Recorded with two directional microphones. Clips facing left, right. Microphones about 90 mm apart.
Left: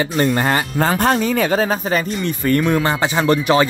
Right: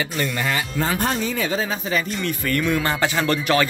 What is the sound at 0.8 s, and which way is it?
Speech, 65° left (ahead or behind).